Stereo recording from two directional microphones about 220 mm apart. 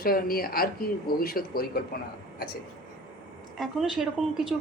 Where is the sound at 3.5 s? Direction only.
Centre (ahead or behind).